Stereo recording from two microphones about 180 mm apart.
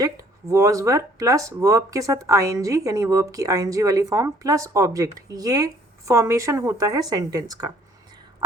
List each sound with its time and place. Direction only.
0.0 s a woman's voice: 20° right (ahead or behind)